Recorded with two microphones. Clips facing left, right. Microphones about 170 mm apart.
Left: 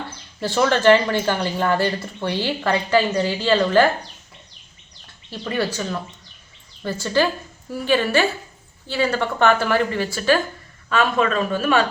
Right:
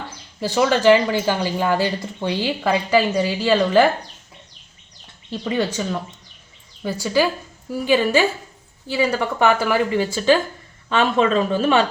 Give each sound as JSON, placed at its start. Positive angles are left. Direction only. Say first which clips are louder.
{"t": 0.3, "sound": "speech", "louder": "right 1 dB", "side_deg": -10}
{"t": 5.3, "sound": "speech", "louder": "right 2 dB", "side_deg": -15}
{"t": 7.0, "sound": "speech", "louder": "right 1 dB", "side_deg": -10}